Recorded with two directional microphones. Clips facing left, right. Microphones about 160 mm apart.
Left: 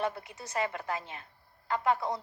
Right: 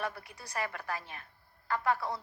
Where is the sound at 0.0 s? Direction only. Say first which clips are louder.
Left 5 dB; 20° left (ahead or behind).